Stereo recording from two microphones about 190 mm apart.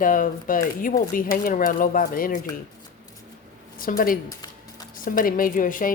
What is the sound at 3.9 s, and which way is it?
Speech, 45° left (ahead or behind).